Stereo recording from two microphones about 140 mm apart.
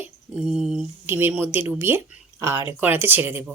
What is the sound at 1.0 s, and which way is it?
Speech, 15° right (ahead or behind).